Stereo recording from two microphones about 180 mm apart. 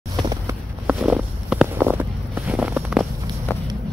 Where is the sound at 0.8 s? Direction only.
5° right (ahead or behind).